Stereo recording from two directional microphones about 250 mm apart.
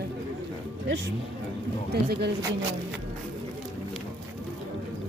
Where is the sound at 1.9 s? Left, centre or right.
Right.